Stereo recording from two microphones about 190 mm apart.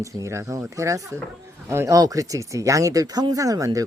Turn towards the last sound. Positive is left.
turn(degrees=-20)  # may be behind; listen again after turning